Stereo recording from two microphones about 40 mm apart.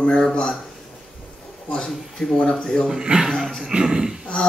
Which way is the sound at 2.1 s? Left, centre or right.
Centre.